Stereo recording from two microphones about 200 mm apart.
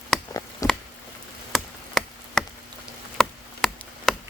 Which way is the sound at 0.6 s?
15° left (ahead or behind).